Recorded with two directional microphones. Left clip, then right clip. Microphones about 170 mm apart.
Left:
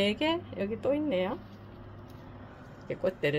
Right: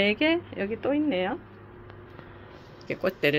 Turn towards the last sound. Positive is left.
turn(degrees=-20)  # may be behind; listen again after turning